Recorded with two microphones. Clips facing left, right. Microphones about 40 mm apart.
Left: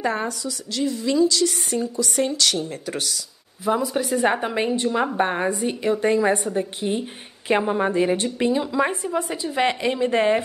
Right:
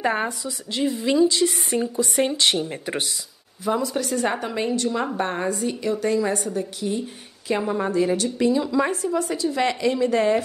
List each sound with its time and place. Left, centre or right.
0.0 s a woman's voice: right
3.6 s a woman's voice: centre; by 10.4 s left